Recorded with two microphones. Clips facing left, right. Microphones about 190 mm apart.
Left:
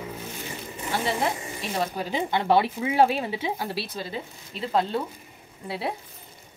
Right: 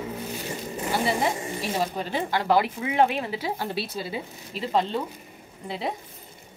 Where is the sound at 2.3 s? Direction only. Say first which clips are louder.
Left 1 dB; 25° left (ahead or behind).